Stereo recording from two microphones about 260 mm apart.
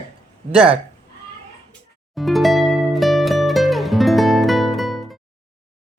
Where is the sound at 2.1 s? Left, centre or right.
Centre.